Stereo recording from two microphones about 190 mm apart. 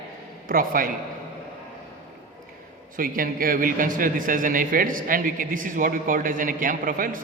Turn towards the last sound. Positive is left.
turn(degrees=-45)  # may be behind; listen again after turning